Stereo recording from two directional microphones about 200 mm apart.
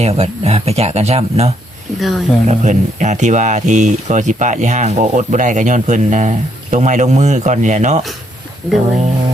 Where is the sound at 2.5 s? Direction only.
35° right (ahead or behind).